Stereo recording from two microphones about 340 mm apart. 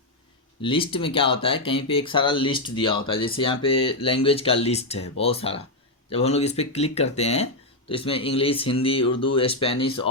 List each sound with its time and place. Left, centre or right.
0.6 s speech: centre